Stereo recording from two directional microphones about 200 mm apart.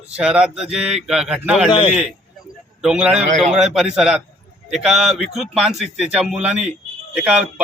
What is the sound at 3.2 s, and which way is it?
Speech, 35° right (ahead or behind).